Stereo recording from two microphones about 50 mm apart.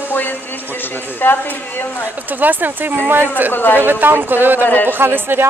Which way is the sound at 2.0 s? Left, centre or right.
Right.